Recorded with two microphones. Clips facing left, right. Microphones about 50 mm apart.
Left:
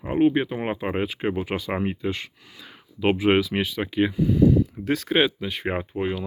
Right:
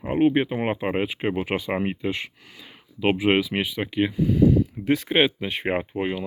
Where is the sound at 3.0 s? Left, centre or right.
Centre.